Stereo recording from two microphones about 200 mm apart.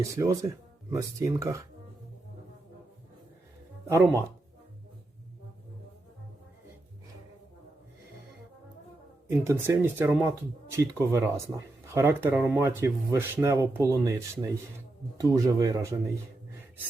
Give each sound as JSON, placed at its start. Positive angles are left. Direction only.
{"t": 0.0, "sound": "speech", "side_deg": -15}
{"t": 3.8, "sound": "speech", "side_deg": -15}
{"t": 9.2, "sound": "speech", "side_deg": -15}